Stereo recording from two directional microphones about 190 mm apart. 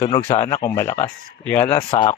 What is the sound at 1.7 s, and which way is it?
Speech, 25° left (ahead or behind).